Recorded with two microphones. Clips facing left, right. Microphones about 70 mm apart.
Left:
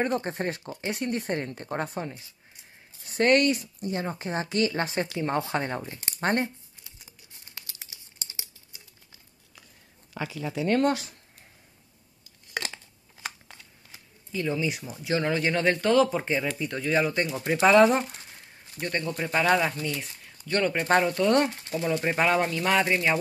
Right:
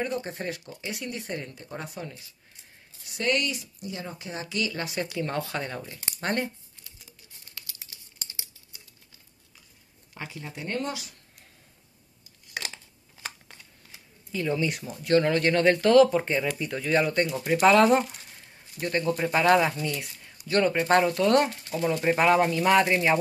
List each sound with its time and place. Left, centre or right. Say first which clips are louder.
0.0 s speech: left 3 dB; left
2.0 s speech: left 4 dB; left
3.0 s speech: left 6 dB; left
5.2 s speech: left 5 dB; left
6.8 s crumpling: even; left
7.9 s a sound: even; left
10.6 s speech: left 9 dB; left
10.9 s speech: left 8 dB; left
14.3 s speech: right 1 dB; centre